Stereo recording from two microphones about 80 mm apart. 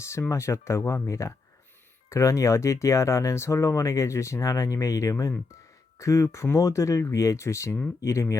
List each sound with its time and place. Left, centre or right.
0.0 s speech: left